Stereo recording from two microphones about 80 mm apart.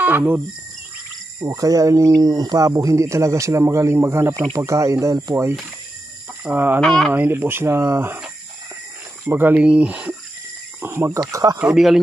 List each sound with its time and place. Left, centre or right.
0.0 s cricket: right
1.4 s speech: right
2.7 s speech: right
5.3 s speech: right
6.8 s speech: centre
7.1 s speech: right
9.2 s speech: right
10.8 s speech: right
11.1 s speech: right
11.6 s speech: centre